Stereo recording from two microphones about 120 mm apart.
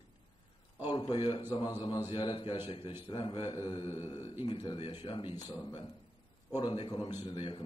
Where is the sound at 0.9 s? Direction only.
35° left (ahead or behind).